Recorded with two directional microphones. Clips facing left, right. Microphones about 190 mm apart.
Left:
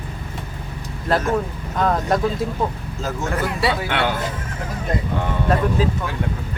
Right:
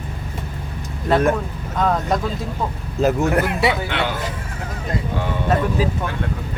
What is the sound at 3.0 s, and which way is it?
Speech, 65° right (ahead or behind).